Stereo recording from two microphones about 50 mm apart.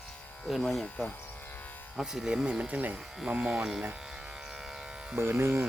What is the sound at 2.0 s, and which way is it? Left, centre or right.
Speech, centre.